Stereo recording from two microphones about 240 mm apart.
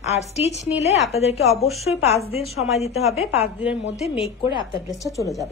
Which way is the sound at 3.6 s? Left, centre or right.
Centre.